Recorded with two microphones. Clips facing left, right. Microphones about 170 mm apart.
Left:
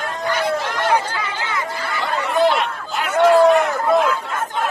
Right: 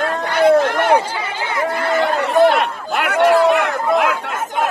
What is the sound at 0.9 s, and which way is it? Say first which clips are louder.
Chatter: right 4 dB; 30° right (ahead or behind).